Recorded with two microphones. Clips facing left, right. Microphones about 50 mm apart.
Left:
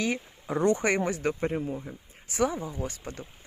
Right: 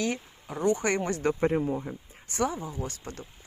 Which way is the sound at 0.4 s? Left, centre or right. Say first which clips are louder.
Left 2 dB; left.